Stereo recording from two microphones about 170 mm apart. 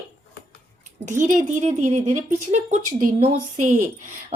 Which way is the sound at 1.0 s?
45° right (ahead or behind).